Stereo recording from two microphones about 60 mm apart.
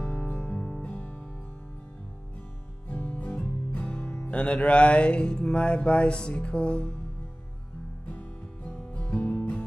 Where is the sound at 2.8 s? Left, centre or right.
Left.